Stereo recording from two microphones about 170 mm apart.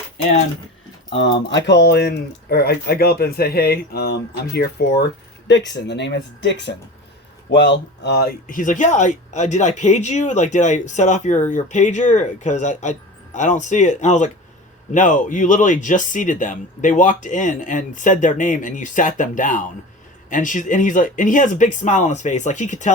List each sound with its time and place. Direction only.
1.2 s speech: 90° left; by 4.9 s 70° left (ahead or behind)
5.5 s speech: 90° left
8.0 s speech: 65° left (ahead or behind); by 22.9 s 45° left (ahead or behind)